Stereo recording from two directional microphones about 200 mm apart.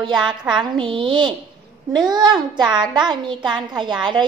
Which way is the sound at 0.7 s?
25° right (ahead or behind).